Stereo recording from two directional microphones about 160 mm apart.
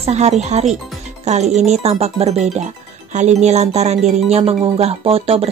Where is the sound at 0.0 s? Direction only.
45° right (ahead or behind).